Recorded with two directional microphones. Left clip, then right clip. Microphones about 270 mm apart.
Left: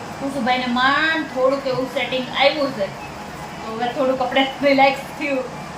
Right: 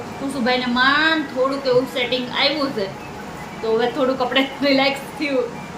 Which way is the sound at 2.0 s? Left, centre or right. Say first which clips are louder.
Right 1 dB; centre.